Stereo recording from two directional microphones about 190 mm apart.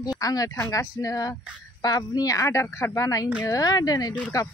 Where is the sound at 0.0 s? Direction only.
20° left (ahead or behind).